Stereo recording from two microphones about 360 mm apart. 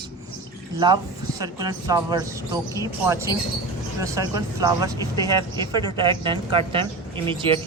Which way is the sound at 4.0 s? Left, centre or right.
Centre.